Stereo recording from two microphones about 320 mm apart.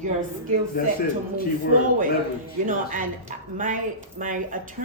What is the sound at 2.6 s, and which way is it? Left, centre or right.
A woman's voice, right.